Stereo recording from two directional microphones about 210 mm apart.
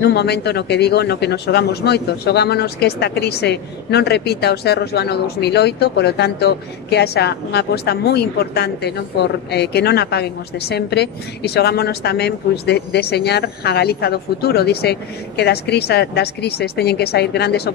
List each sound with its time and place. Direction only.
0.0 s speech: 50° left (ahead or behind)